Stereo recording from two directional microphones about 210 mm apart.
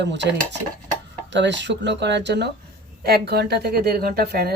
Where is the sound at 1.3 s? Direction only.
60° right (ahead or behind).